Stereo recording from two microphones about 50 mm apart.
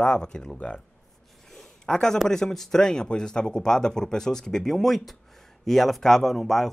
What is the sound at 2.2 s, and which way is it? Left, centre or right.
A man's voice, centre.